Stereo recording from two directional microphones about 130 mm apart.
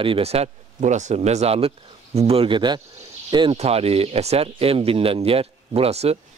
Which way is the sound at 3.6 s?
50° right (ahead or behind).